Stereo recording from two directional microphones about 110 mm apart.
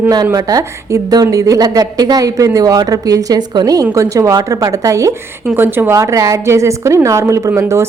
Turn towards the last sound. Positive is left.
turn(degrees=-25)  # may be behind; listen again after turning